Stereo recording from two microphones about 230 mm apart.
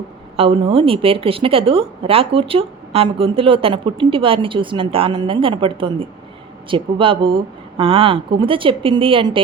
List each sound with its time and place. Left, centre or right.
0.3 s speech: right